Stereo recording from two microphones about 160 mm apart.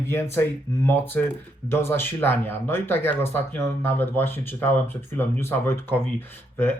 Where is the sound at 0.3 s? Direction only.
15° left (ahead or behind).